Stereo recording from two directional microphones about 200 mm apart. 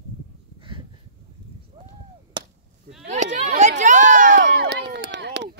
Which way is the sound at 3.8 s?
40° right (ahead or behind).